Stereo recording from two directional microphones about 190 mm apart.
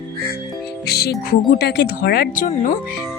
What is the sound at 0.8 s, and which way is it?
Music, 60° left (ahead or behind).